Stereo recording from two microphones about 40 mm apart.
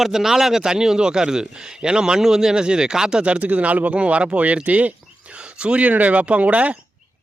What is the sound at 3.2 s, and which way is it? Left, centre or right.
Speech, right.